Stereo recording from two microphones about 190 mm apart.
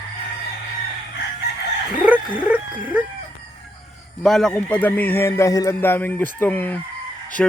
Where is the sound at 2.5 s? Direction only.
10° right (ahead or behind).